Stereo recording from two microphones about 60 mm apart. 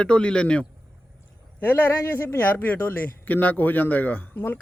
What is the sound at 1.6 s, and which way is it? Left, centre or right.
Speech, left.